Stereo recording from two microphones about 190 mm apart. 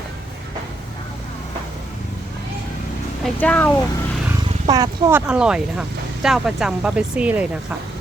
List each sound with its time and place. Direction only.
3.2 s speech: 5° left (ahead or behind)
4.7 s speech: 20° right (ahead or behind)
5.2 s speech: 5° right (ahead or behind)